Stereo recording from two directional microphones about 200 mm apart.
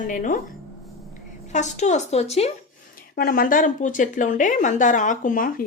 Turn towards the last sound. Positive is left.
turn(degrees=45)  # may be behind; listen again after turning